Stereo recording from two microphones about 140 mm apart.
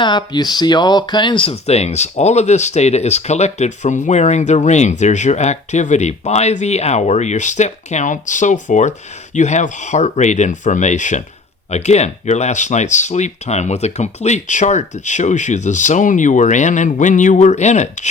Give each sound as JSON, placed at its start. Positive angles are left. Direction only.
{"t": 0.0, "sound": "speech", "side_deg": 30}